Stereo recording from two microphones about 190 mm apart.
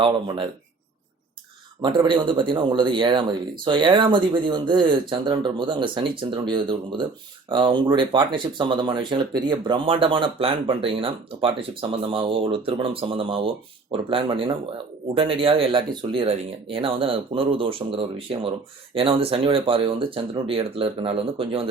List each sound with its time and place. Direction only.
1.8 s speech: 25° right (ahead or behind)